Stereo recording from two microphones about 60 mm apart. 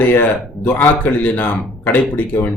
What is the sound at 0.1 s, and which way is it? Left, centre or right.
Speech, left.